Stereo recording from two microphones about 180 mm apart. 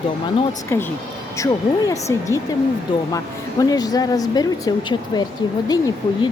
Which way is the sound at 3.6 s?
20° left (ahead or behind).